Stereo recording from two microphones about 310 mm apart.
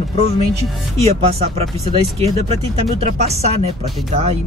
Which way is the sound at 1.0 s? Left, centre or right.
Centre.